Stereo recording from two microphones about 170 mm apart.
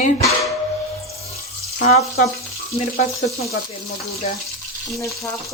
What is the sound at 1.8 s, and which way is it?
Frying, 45° left (ahead or behind).